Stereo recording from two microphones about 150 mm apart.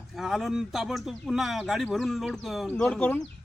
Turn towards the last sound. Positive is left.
turn(degrees=10)  # may be behind; listen again after turning